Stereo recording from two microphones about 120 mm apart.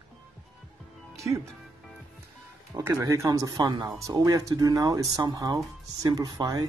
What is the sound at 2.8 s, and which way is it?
Speech, 25° right (ahead or behind).